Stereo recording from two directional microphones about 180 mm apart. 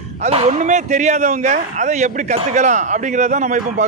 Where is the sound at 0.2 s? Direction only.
35° right (ahead or behind).